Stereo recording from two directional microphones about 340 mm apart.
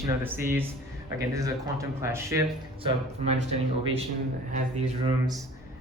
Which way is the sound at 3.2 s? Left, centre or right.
Centre.